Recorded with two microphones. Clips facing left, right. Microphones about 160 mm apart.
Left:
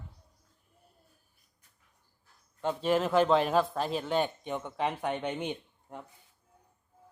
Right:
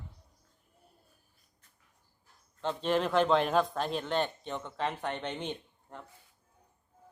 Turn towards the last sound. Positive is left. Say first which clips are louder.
# left 3 dB
turn(degrees=10)  # may be behind; listen again after turning